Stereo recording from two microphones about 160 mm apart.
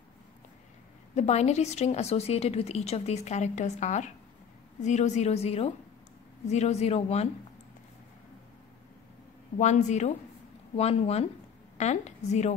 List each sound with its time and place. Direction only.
1.1 s a woman's voice: 45° left (ahead or behind)
9.6 s a woman's voice: 45° left (ahead or behind)